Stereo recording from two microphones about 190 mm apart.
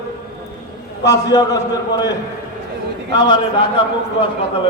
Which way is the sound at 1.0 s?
20° left (ahead or behind).